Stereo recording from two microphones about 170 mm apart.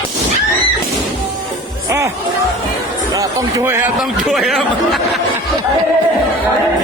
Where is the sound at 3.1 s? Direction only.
20° right (ahead or behind).